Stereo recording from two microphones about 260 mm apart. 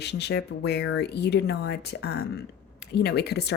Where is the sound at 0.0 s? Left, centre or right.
Left.